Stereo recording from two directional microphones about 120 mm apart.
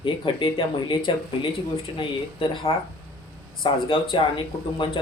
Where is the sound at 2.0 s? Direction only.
45° left (ahead or behind).